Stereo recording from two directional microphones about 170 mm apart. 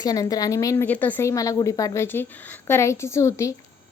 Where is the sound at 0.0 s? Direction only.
20° left (ahead or behind).